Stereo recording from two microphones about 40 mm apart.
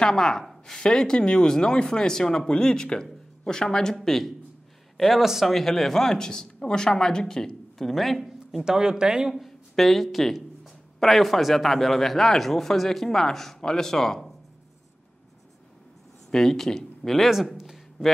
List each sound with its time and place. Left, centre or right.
0.0 s speech: centre
3.9 s speech: centre
5.1 s speech: centre
5.5 s speech: centre
7.9 s speech: centre
8.6 s speech: centre
9.3 s speech: centre
16.3 s speech: centre
17.3 s speech: centre